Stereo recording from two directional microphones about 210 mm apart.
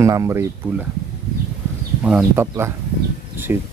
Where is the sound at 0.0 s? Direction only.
15° right (ahead or behind).